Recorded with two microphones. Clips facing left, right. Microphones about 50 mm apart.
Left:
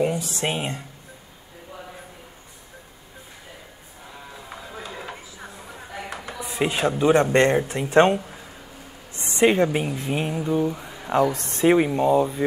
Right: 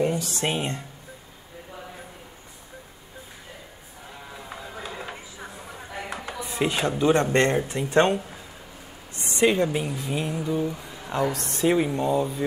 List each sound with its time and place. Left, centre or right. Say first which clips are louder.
0.0 s a sound: left 1 dB; centre
0.5 s speech: even; centre
4.1 s a sound: even; centre
6.5 s speech: left 2 dB; centre
9.4 s speech: left 3 dB; left
9.9 s mantra: left 3 dB; left
10.4 s speech: left 3 dB; centre